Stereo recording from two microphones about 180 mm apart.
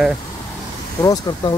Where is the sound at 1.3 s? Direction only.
25° left (ahead or behind).